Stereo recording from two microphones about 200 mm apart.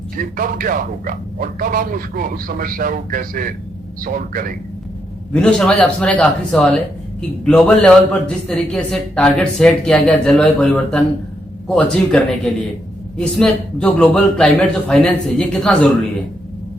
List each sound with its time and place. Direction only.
0.2 s speech: 45° right (ahead or behind)
5.3 s a man's voice: 5° left (ahead or behind)